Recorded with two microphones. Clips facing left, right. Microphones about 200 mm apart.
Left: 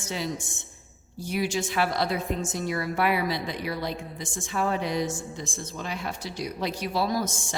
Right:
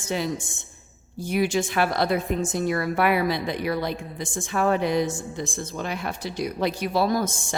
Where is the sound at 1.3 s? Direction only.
55° right (ahead or behind).